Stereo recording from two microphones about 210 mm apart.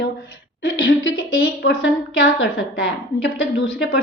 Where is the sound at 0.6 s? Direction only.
65° left (ahead or behind).